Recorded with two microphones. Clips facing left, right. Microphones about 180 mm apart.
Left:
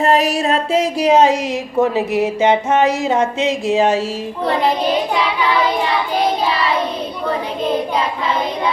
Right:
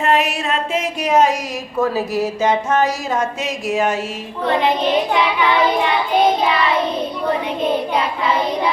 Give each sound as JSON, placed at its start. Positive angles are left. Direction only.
{"t": 0.0, "sound": "speech", "side_deg": 35}